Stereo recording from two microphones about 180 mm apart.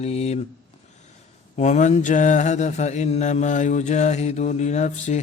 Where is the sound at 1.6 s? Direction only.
40° left (ahead or behind).